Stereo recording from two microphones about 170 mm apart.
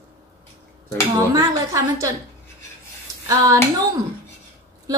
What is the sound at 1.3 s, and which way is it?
Speech, 20° right (ahead or behind).